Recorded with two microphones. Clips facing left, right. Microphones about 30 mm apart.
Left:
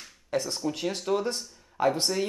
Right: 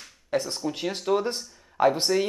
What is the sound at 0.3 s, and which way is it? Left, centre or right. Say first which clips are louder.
Speech: right 2 dB; centre.